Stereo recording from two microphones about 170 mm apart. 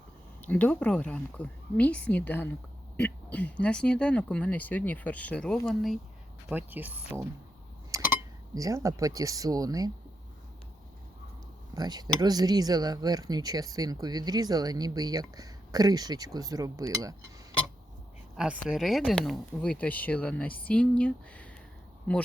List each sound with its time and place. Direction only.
0.4 s speech: 10° left (ahead or behind)
6.5 s speech: 10° right (ahead or behind)
7.9 s a sound: 20° right (ahead or behind)
8.5 s speech: 20° right (ahead or behind)
11.7 s speech: 25° right (ahead or behind)
18.3 s speech: 5° right (ahead or behind)